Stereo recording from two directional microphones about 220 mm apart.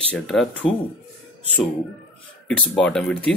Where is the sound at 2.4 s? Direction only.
5° left (ahead or behind).